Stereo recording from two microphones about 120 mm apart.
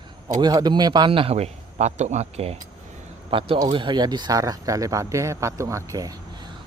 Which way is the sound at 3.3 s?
45° right (ahead or behind).